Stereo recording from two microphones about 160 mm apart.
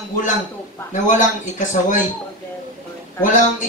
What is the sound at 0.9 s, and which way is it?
Speech, 50° left (ahead or behind).